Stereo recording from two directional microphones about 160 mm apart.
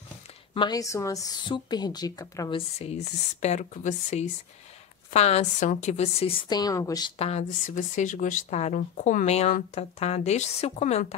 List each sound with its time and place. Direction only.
0.6 s a woman's voice: 25° left (ahead or behind)
2.5 s speech: 40° left (ahead or behind)
6.5 s a woman's voice: 25° left (ahead or behind)
7.2 s speech: 45° left (ahead or behind)